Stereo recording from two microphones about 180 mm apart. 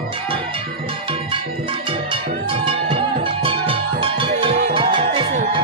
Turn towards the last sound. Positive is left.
turn(degrees=-25)  # may be behind; listen again after turning